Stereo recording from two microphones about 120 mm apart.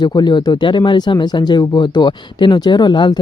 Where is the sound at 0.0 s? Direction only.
35° left (ahead or behind).